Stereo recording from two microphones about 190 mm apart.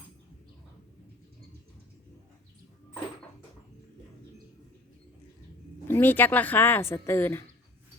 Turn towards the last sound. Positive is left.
turn(degrees=10)  # may be behind; listen again after turning